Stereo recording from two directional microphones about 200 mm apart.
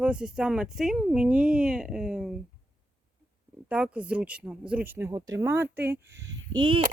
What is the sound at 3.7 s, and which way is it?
Speech, 5° right (ahead or behind).